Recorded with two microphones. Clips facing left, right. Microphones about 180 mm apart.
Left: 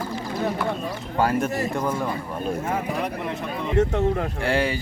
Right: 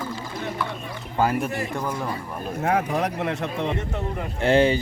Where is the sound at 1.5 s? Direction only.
40° left (ahead or behind).